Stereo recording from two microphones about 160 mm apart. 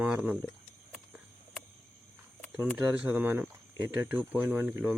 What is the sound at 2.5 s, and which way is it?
Speech, 10° right (ahead or behind).